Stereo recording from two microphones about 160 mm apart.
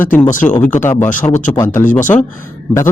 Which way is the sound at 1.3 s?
55° left (ahead or behind).